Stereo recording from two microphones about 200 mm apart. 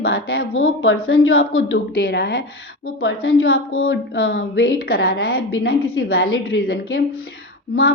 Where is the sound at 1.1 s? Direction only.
90° left.